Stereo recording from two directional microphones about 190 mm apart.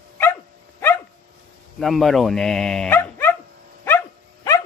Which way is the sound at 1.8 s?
Centre (ahead or behind).